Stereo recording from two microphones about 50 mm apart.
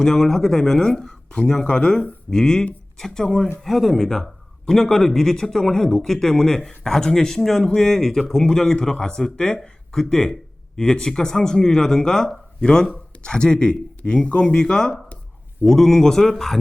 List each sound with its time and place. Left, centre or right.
0.0 s a man's voice: centre
14.0 s a sound: left
14.4 s a man's voice: centre